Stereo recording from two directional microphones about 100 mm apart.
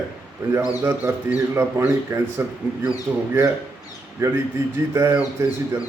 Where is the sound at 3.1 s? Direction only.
15° right (ahead or behind).